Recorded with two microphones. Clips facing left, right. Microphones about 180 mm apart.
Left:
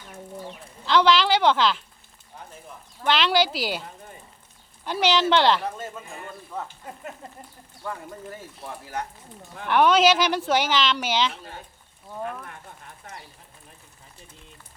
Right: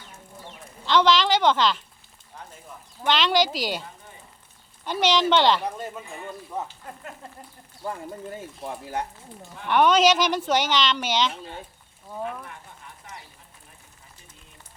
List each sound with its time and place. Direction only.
0.9 s speech: 5° left (ahead or behind)
3.1 s speech: 5° left (ahead or behind)
4.9 s speech: centre (ahead or behind)
6.5 s speech: 20° right (ahead or behind)
7.9 s speech: 25° right (ahead or behind)
9.6 s speech: centre (ahead or behind)